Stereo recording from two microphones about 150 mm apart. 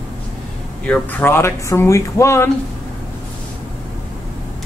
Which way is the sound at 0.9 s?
10° left (ahead or behind).